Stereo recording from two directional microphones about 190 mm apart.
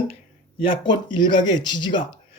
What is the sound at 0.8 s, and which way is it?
Speech, 25° left (ahead or behind).